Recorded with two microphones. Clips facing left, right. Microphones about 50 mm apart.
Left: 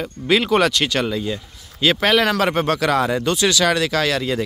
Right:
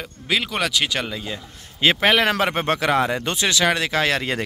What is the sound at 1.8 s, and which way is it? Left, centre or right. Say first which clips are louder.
Speech: left 1 dB; right.